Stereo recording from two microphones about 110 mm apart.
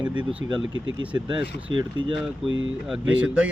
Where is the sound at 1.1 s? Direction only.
50° right (ahead or behind).